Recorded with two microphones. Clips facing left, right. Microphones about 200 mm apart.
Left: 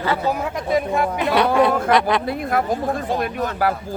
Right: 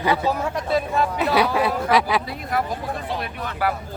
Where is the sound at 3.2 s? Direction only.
45° left (ahead or behind).